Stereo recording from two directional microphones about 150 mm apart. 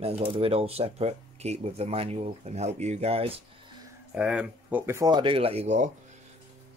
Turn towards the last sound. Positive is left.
turn(degrees=-50)  # may be behind; listen again after turning